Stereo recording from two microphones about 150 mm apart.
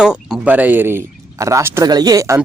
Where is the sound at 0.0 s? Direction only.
5° right (ahead or behind).